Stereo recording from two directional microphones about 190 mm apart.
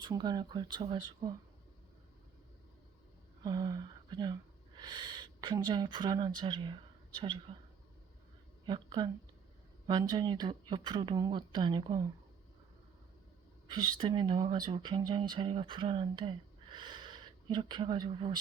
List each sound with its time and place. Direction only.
0.0 s speech: 20° right (ahead or behind)
3.4 s speech: 20° right (ahead or behind)
8.6 s speech: 25° right (ahead or behind)
13.7 s speech: 25° right (ahead or behind)